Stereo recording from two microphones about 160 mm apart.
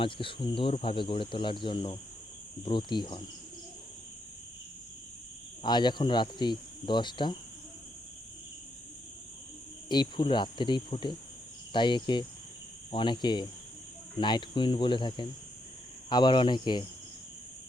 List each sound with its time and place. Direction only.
0.0 s speech: 30° left (ahead or behind)
5.6 s speech: 25° left (ahead or behind)
9.9 s speech: 30° left (ahead or behind)